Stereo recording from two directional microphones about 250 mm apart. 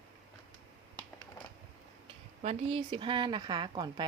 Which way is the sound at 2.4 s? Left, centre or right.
Right.